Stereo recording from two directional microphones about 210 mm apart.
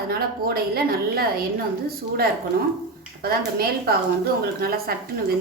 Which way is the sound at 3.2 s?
45° right (ahead or behind).